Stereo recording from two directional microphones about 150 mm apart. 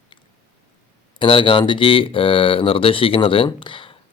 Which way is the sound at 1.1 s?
35° left (ahead or behind).